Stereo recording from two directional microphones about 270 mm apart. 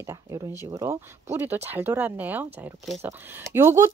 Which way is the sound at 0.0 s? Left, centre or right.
Centre.